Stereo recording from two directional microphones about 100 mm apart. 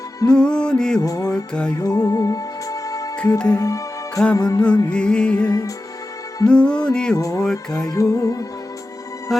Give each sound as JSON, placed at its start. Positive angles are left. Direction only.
{"t": 0.3, "sound": "music", "side_deg": 10}
{"t": 1.0, "sound": "music", "side_deg": 35}
{"t": 3.3, "sound": "music", "side_deg": 10}
{"t": 3.6, "sound": "music", "side_deg": 35}
{"t": 4.9, "sound": "music", "side_deg": 10}
{"t": 5.5, "sound": "music", "side_deg": 35}
{"t": 6.5, "sound": "music", "side_deg": 10}
{"t": 7.2, "sound": "music", "side_deg": 35}
{"t": 9.3, "sound": "music", "side_deg": 0}